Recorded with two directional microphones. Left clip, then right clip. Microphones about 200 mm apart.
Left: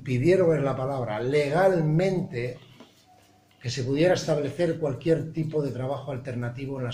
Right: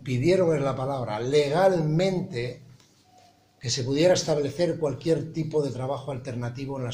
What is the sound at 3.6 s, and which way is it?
Speech, 25° right (ahead or behind).